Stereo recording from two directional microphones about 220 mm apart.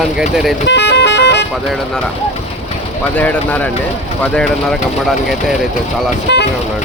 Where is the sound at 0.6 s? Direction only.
50° left (ahead or behind).